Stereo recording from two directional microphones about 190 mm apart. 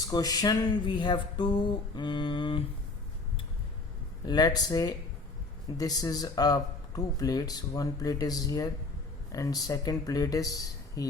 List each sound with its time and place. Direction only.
0.1 s speech: 20° left (ahead or behind)
4.3 s speech: 20° left (ahead or behind)